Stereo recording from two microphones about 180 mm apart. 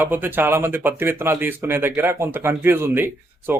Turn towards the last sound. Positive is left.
turn(degrees=-10)  # may be behind; listen again after turning